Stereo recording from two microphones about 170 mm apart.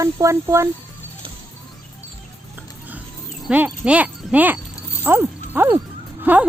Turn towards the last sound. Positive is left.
turn(degrees=-10)  # may be behind; listen again after turning